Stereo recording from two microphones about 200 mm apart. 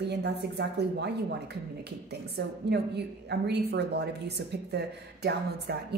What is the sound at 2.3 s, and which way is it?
A woman's voice, 55° right (ahead or behind).